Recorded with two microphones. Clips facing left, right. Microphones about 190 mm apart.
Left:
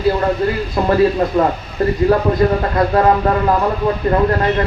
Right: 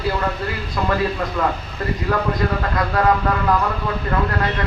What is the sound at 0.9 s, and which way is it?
Speech, 35° left (ahead or behind).